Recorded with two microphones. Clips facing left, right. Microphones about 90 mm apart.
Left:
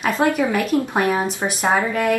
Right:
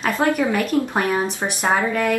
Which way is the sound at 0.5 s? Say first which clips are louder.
Even; 5° left (ahead or behind).